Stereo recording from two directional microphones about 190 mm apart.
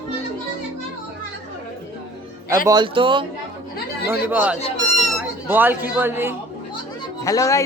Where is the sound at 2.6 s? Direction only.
25° right (ahead or behind).